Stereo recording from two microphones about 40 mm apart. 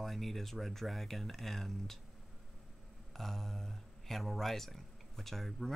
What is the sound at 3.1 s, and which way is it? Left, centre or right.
Speech, centre.